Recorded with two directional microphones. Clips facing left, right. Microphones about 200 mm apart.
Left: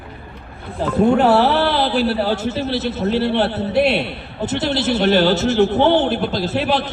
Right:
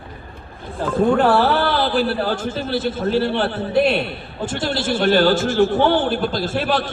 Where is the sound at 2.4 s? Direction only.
50° right (ahead or behind).